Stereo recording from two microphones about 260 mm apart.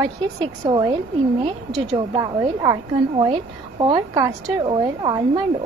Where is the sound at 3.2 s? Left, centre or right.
Centre.